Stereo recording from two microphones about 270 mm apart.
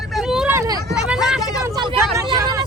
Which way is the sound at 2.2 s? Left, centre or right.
Centre.